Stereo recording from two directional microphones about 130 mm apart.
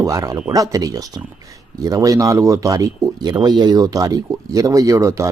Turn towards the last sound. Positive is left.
turn(degrees=-25)  # may be behind; listen again after turning